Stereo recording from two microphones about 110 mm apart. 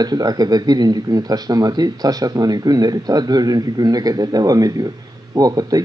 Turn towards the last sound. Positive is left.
turn(degrees=-35)  # may be behind; listen again after turning